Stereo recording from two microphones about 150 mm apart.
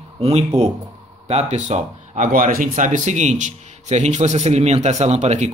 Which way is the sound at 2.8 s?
55° right (ahead or behind).